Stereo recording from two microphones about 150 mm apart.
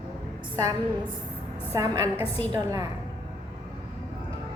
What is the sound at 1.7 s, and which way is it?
A woman's voice, 20° right (ahead or behind).